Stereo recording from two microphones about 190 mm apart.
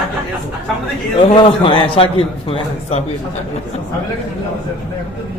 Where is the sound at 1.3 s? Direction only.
25° left (ahead or behind).